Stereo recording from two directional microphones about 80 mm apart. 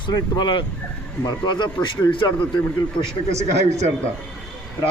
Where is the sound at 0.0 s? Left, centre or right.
Left.